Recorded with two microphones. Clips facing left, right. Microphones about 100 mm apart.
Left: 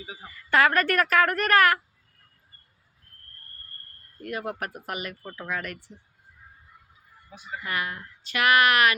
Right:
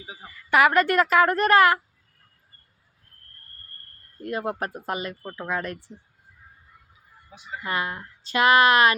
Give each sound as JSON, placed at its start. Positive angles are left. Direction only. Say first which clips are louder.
{"t": 0.1, "sound": "a woman's voice", "louder": "right 2 dB", "side_deg": -15}
{"t": 4.2, "sound": "speech", "louder": "right 4 dB", "side_deg": -30}
{"t": 7.3, "sound": "speech", "louder": "right 3 dB", "side_deg": -25}